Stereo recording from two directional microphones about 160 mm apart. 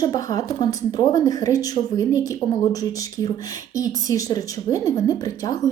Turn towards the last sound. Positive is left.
turn(degrees=20)  # may be behind; listen again after turning